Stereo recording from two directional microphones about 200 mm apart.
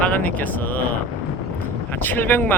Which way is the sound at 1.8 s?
10° left (ahead or behind).